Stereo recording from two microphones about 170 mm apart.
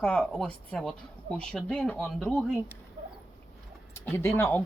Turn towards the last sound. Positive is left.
turn(degrees=10)  # may be behind; listen again after turning